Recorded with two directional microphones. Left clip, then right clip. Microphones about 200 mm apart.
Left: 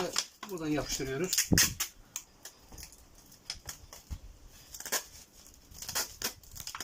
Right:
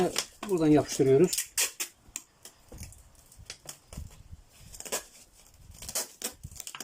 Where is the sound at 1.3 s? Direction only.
15° right (ahead or behind).